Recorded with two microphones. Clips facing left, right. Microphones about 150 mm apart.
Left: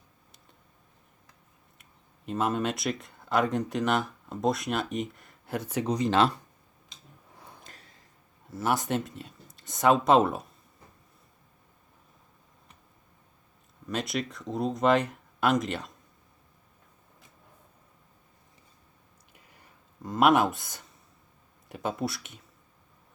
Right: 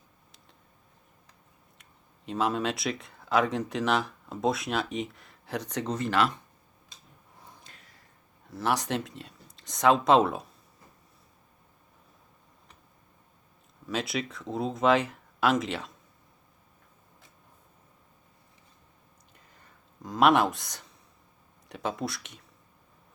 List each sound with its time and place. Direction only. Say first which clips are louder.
1.8 s speech: left 1 dB; centre (ahead or behind); by 6.4 s 25° left (ahead or behind)
7.6 s a sound: left 3 dB; 40° left (ahead or behind)
8.4 s speech: left 1 dB; centre (ahead or behind)
13.8 s speech: even; centre (ahead or behind)
20.0 s speech: even; centre (ahead or behind)